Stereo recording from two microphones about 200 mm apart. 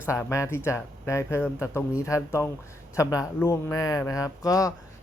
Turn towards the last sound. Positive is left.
turn(degrees=15)  # may be behind; listen again after turning